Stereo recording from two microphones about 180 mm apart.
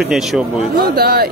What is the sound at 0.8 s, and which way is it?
Speech, 60° right (ahead or behind).